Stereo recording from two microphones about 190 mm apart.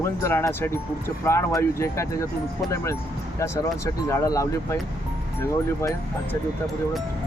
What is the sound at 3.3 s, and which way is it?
Speech, 15° left (ahead or behind).